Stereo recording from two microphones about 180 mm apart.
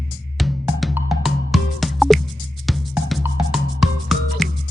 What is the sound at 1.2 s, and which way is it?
Music, centre (ahead or behind).